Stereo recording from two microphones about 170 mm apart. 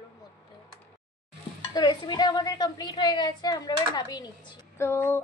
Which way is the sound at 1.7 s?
25° left (ahead or behind).